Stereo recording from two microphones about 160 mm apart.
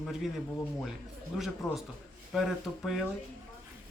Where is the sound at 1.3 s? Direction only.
5° right (ahead or behind).